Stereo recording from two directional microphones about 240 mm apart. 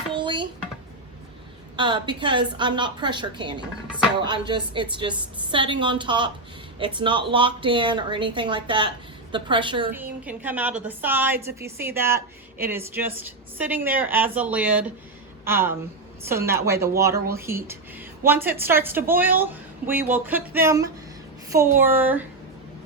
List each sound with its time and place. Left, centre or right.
0.1 s a sound: centre
1.7 s a woman's voice: centre
9.9 s speech: centre